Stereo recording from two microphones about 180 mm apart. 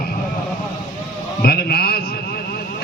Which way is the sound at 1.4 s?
60° left (ahead or behind).